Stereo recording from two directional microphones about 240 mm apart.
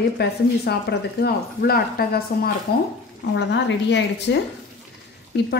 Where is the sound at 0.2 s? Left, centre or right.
Left.